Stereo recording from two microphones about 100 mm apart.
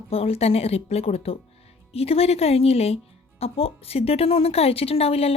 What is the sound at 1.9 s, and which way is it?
Speech, 85° left.